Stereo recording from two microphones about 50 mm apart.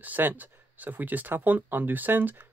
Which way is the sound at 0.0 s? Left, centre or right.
Right.